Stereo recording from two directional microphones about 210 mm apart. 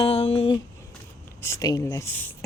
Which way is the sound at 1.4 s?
15° left (ahead or behind).